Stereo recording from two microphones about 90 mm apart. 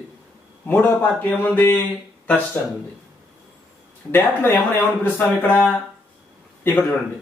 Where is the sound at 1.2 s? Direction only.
20° left (ahead or behind).